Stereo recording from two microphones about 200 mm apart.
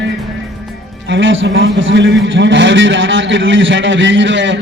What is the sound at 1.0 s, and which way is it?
A man's voice, 65° right (ahead or behind).